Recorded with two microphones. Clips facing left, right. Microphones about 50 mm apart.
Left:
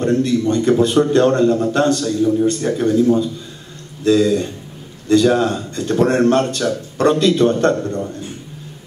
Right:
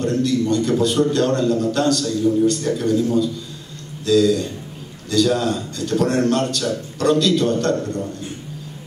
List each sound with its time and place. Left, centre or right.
0.0 s a man's voice: left